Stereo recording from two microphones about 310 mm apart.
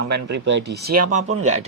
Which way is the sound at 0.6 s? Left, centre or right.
Right.